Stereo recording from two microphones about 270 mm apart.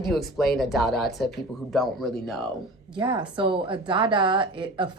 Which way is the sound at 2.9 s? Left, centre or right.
Centre.